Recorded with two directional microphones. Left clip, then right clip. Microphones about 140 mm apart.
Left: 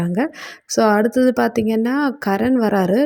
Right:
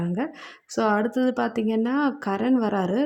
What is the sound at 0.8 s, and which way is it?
Speech, 30° left (ahead or behind).